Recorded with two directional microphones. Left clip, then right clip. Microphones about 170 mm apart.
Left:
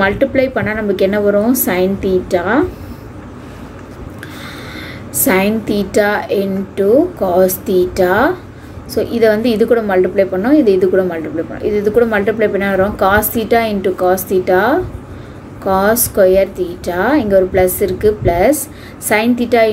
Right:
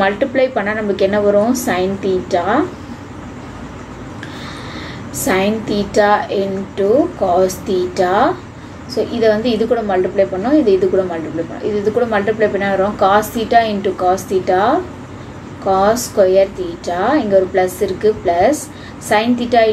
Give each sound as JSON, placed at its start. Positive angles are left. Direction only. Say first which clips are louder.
{"t": 0.0, "sound": "a woman's voice", "louder": "left 1 dB", "side_deg": 45}
{"t": 5.2, "sound": "a woman's voice", "louder": "left 2 dB", "side_deg": 50}